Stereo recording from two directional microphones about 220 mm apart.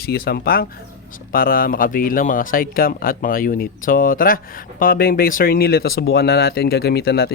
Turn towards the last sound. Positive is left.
turn(degrees=45)  # may be behind; listen again after turning